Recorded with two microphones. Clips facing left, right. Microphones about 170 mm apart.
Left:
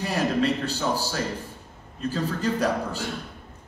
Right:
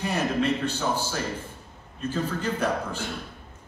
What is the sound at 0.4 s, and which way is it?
A man's voice, 35° left (ahead or behind).